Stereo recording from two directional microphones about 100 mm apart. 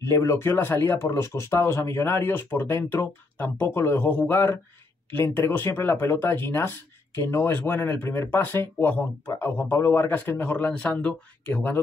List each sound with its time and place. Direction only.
0.0 s speech: 25° left (ahead or behind)